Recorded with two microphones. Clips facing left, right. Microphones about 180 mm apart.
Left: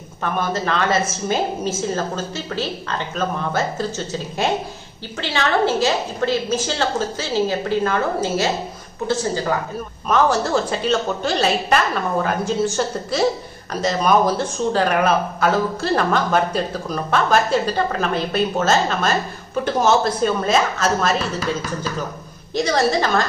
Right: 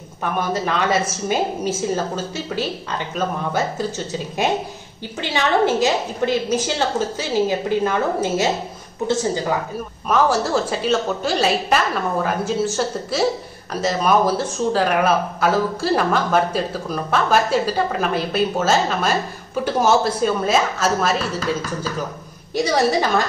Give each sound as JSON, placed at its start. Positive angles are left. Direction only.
{"t": 0.2, "sound": "a woman's voice", "side_deg": -10}
{"t": 5.2, "sound": "a woman's voice", "side_deg": -15}
{"t": 10.0, "sound": "speech", "side_deg": -5}
{"t": 22.5, "sound": "a woman's voice", "side_deg": -10}